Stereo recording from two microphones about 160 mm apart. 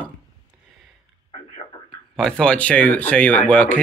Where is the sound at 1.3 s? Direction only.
30° left (ahead or behind).